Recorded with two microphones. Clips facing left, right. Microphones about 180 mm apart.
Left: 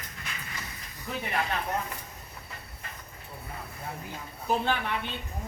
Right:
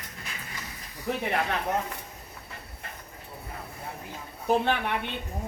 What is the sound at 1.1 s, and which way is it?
Speech, 65° right (ahead or behind).